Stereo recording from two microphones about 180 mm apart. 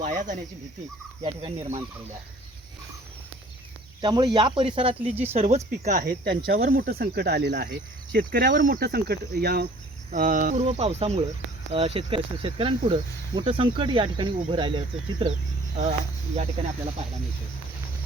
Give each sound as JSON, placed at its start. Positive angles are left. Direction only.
{"t": 0.0, "sound": "speech", "side_deg": -45}
{"t": 1.2, "sound": "speech", "side_deg": -30}
{"t": 4.0, "sound": "speech", "side_deg": -25}
{"t": 6.2, "sound": "speech", "side_deg": -60}
{"t": 10.1, "sound": "speech", "side_deg": -45}